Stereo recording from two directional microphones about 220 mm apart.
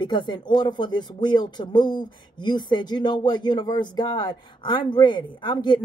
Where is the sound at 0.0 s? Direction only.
20° left (ahead or behind).